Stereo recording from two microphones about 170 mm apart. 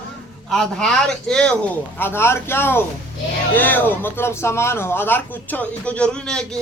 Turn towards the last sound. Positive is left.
turn(degrees=5)  # may be behind; listen again after turning